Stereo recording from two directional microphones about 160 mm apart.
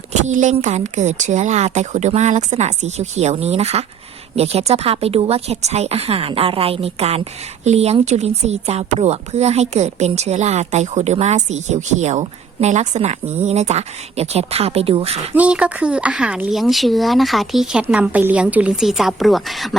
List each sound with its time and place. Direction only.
0.1 s a woman's voice: 50° right (ahead or behind)
15.4 s a woman's voice: 10° right (ahead or behind)